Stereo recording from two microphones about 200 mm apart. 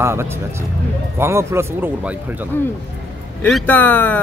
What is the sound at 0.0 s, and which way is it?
Speech, 15° right (ahead or behind).